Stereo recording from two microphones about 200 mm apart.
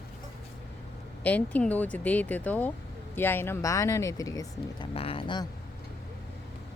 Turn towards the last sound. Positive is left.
turn(degrees=25)  # may be behind; listen again after turning